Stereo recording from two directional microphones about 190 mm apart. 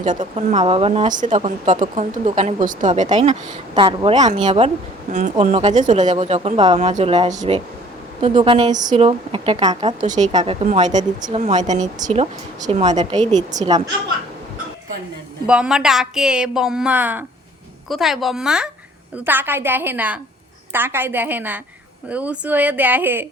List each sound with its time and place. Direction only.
0.0 s a woman's voice: 40° right (ahead or behind)
1.1 s a woman's voice: 40° right (ahead or behind)
8.7 s a woman's voice: 40° right (ahead or behind)
13.6 s a woman's voice: 20° right (ahead or behind)
15.4 s a woman's voice: 5° right (ahead or behind)